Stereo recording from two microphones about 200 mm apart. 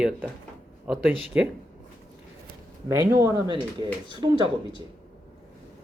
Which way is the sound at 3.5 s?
25° right (ahead or behind).